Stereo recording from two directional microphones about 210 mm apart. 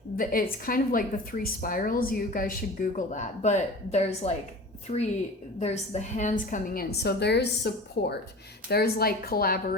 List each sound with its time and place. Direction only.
0.2 s a woman's voice: 45° left (ahead or behind)